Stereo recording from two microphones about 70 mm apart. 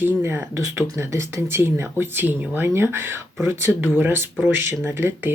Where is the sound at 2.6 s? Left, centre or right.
Right.